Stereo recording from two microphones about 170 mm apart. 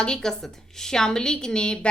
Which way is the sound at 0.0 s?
5° left (ahead or behind).